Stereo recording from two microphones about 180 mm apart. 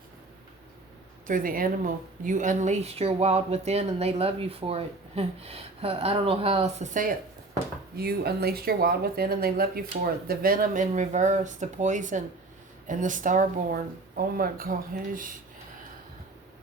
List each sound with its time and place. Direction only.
1.3 s a woman's voice: 50° right (ahead or behind)
7.9 s speech: 60° right (ahead or behind)